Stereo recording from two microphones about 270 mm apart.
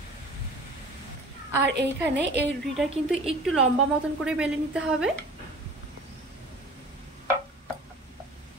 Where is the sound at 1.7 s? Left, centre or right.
Right.